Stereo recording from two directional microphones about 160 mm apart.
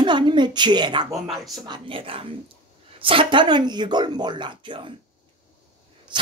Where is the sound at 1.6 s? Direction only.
30° right (ahead or behind).